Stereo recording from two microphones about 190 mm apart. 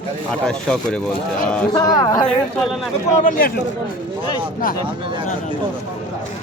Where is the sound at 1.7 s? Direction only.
20° left (ahead or behind).